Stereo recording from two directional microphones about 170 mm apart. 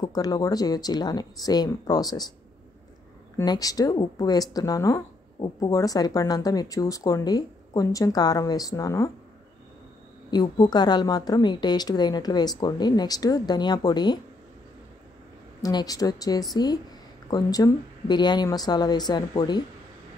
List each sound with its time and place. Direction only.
0.0 s speech: 20° left (ahead or behind)
3.3 s speech: 20° left (ahead or behind)
10.3 s speech: 25° left (ahead or behind)
15.6 s speech: 20° left (ahead or behind)